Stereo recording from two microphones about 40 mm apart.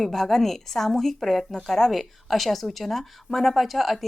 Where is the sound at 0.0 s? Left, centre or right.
Centre.